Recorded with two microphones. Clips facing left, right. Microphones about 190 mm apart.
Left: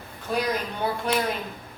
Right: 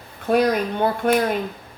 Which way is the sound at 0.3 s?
55° right (ahead or behind).